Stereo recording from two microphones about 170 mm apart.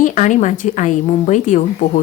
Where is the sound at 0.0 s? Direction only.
45° left (ahead or behind).